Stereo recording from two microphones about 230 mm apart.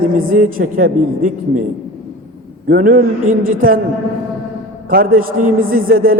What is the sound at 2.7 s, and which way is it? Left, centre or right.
A man's voice, right.